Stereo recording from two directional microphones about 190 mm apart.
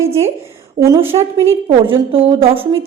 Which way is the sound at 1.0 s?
30° right (ahead or behind).